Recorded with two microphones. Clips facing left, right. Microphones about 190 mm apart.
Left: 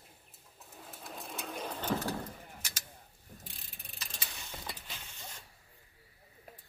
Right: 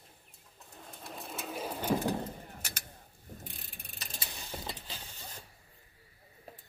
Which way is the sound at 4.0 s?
35° right (ahead or behind).